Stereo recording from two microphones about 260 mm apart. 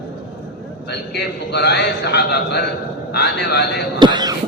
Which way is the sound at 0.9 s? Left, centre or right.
Left.